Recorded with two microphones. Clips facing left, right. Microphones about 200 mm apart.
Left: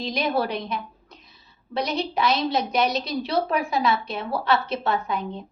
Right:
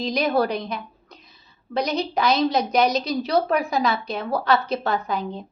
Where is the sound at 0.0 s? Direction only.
40° right (ahead or behind).